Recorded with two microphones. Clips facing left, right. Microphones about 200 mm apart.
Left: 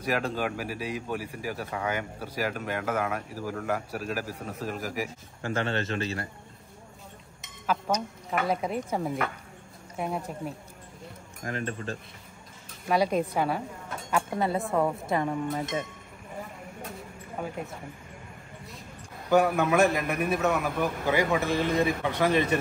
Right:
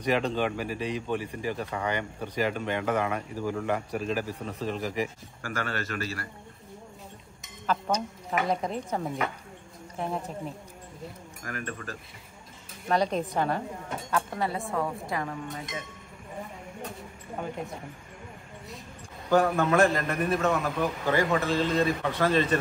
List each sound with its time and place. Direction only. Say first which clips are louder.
0.0 s speech: right 2 dB; 5° left (ahead or behind)
5.4 s a man's voice: left 4 dB; 25° left (ahead or behind)
7.4 s music: even; centre (ahead or behind)
8.3 s speech: even; 5° left (ahead or behind)
11.4 s a man's voice: left 4 dB; 25° left (ahead or behind)
12.8 s a man's voice: left 1 dB; 10° left (ahead or behind)
14.1 s a man's voice: left 3 dB; 25° left (ahead or behind)
14.6 s speech: left 4 dB; centre (ahead or behind)
15.0 s a man's voice: left 5 dB; 25° left (ahead or behind)
19.3 s a man's voice: even; 10° left (ahead or behind)